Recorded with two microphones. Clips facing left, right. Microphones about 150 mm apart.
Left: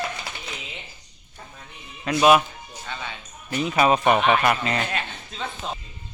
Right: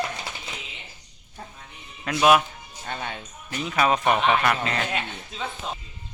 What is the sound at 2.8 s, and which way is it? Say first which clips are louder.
Music: right 3 dB; 50° right (ahead or behind).